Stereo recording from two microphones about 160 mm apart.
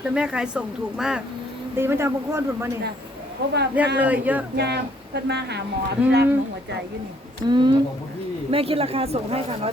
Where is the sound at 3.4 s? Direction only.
90° right.